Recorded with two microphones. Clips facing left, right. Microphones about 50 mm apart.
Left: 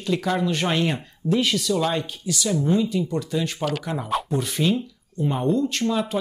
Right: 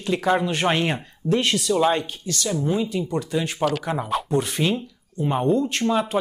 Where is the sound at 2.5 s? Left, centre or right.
Centre.